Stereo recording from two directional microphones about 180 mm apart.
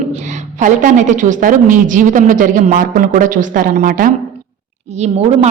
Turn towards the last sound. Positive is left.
turn(degrees=-35)  # may be behind; listen again after turning